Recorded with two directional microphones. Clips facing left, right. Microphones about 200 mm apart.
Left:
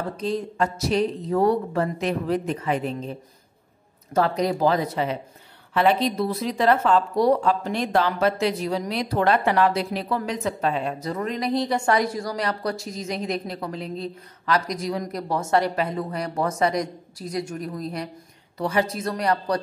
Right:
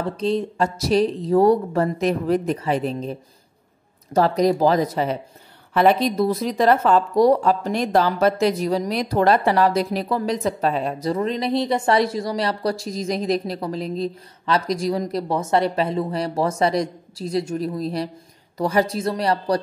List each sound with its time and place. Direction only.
0.2 s speech: 30° right (ahead or behind)
4.1 s a woman's voice: 40° right (ahead or behind)
18.9 s a woman's voice: 30° right (ahead or behind)